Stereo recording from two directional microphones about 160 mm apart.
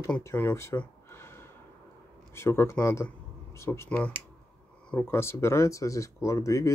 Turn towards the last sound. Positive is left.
turn(degrees=20)  # may be behind; listen again after turning